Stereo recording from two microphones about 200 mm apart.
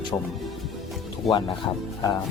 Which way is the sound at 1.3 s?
Centre (ahead or behind).